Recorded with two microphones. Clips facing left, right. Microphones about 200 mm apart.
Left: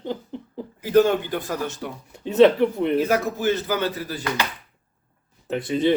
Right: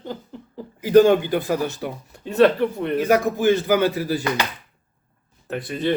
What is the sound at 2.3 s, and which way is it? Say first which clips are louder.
Speech: left 1 dB; 20° left (ahead or behind).